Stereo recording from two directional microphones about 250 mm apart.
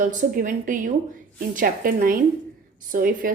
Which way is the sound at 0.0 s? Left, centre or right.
Right.